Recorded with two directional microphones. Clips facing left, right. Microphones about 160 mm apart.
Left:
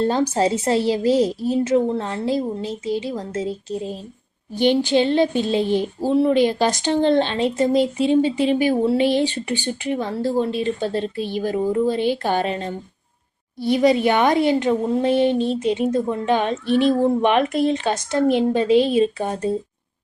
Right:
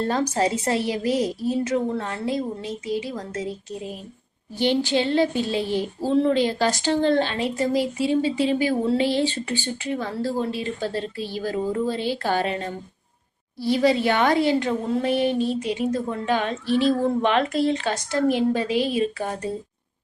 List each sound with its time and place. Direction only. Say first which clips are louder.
0.0 s speech: left 4 dB; 30° left (ahead or behind)
4.5 s speech: left 4 dB; 15° left (ahead or behind)